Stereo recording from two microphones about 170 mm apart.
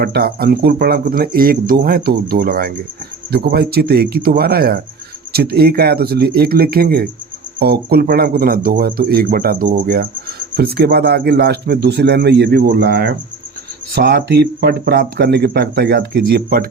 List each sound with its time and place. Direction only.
0.0 s speech: 65° right (ahead or behind)
12.8 s speech: 80° right
13.9 s speech: 70° right (ahead or behind)